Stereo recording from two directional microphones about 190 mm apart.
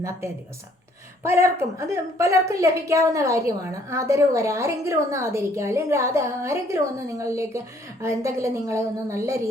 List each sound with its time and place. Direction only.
1.2 s a woman's voice: 15° right (ahead or behind)